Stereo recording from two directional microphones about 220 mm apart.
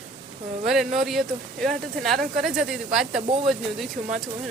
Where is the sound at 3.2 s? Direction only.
25° right (ahead or behind).